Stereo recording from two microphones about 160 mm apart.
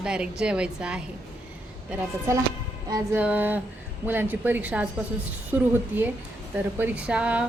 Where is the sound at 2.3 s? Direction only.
20° right (ahead or behind).